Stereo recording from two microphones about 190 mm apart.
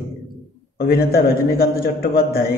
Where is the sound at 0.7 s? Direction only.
55° left (ahead or behind).